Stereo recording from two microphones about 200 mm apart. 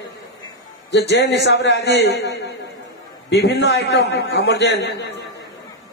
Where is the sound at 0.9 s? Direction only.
60° left (ahead or behind).